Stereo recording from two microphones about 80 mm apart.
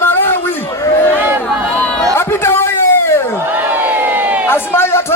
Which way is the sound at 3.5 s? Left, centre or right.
Right.